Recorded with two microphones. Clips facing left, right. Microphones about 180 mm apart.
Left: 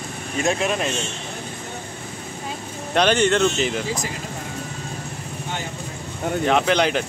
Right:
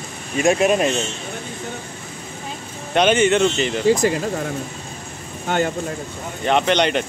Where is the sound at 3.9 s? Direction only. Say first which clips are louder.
Right 11 dB; 60° right (ahead or behind).